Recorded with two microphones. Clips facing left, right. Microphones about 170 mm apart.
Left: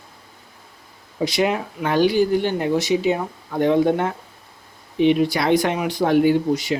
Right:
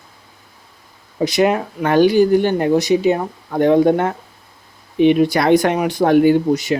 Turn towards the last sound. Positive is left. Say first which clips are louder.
# right 4 dB
turn(degrees=-55)  # may be behind; listen again after turning